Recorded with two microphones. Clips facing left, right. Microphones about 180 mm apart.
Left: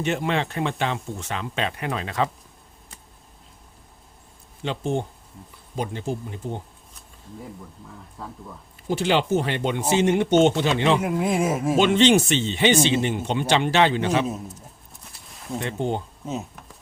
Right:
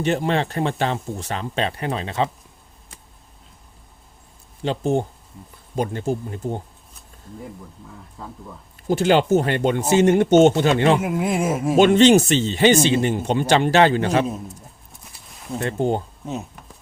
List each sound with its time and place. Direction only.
0.0 s speech: 35° right (ahead or behind)
4.6 s speech: 40° right (ahead or behind)
8.2 s speech: centre (ahead or behind)
8.9 s speech: 45° right (ahead or behind)
10.9 s speech: centre (ahead or behind)
11.8 s speech: 45° right (ahead or behind)
15.0 s a sound: centre (ahead or behind)
15.6 s speech: 40° right (ahead or behind)
16.2 s a sound: centre (ahead or behind)